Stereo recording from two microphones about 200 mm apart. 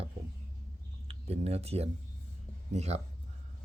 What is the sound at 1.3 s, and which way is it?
Speech, 30° right (ahead or behind).